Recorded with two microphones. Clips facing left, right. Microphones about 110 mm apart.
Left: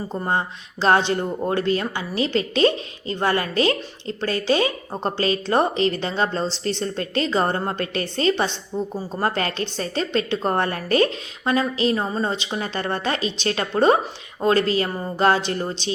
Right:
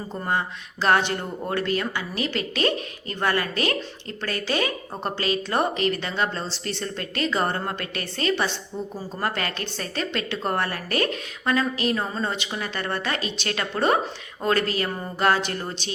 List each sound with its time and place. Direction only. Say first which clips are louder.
0.3 s speech: left 1 dB; 30° left (ahead or behind)